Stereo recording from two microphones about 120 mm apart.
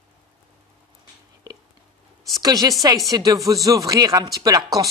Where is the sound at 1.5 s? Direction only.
30° right (ahead or behind).